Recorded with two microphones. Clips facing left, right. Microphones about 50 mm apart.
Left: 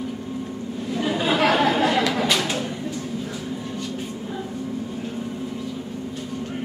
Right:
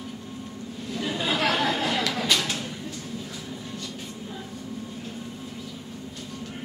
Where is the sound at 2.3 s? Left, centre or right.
Left.